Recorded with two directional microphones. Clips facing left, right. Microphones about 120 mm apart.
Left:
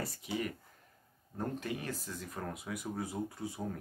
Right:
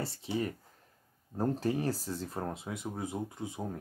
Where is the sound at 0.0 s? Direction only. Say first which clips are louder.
Right 3 dB; 30° right (ahead or behind).